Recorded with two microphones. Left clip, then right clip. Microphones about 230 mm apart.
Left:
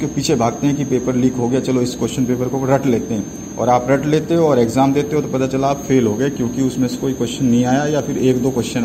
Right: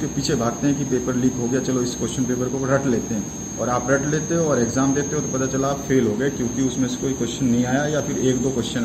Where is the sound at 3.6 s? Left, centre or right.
Left.